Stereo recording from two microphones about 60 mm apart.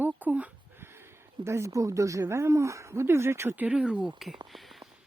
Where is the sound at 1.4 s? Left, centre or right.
Right.